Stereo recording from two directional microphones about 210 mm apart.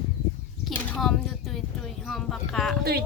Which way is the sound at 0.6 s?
Centre (ahead or behind).